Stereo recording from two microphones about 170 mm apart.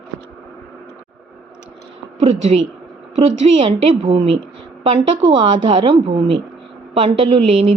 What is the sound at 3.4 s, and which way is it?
Speech, 35° right (ahead or behind).